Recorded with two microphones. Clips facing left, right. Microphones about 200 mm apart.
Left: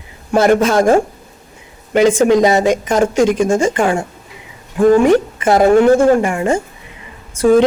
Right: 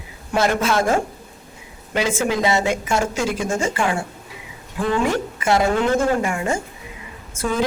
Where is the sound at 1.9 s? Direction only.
50° left (ahead or behind).